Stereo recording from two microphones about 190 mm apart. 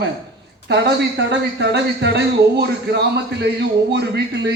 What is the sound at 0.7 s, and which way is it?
A man's voice, 65° right (ahead or behind).